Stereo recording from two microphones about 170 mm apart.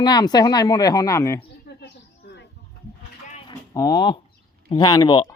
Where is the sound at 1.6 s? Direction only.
80° left.